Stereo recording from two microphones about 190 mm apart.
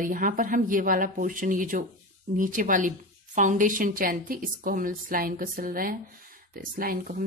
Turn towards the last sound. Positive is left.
turn(degrees=-50)  # may be behind; listen again after turning